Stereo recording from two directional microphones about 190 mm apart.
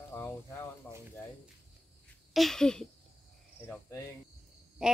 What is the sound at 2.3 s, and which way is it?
Speech, centre (ahead or behind).